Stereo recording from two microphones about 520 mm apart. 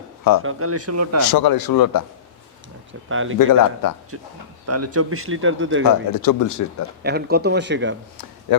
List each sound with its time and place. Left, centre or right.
0.4 s a man's voice: right
1.2 s a man's voice: left
3.1 s a man's voice: right
3.3 s a man's voice: left
4.6 s a man's voice: right
6.1 s a man's voice: left
7.0 s a man's voice: centre